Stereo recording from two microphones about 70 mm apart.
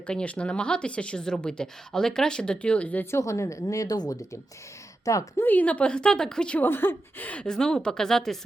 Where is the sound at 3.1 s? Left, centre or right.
Left.